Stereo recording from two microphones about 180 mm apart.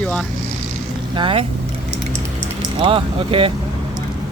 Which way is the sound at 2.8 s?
30° right (ahead or behind).